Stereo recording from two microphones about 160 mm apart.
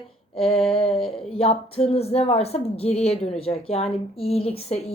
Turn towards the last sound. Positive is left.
turn(degrees=40)  # may be behind; listen again after turning